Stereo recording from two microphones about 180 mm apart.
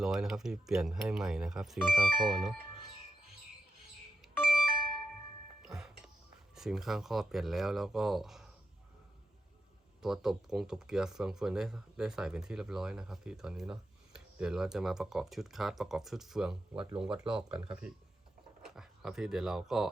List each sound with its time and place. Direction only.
0.0 s speech: centre (ahead or behind)
4.4 s music: 5° right (ahead or behind)
6.6 s speech: 5° right (ahead or behind)
10.0 s speech: centre (ahead or behind)